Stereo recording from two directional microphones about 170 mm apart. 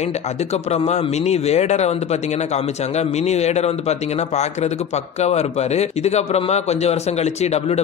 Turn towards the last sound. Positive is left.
turn(degrees=40)  # may be behind; listen again after turning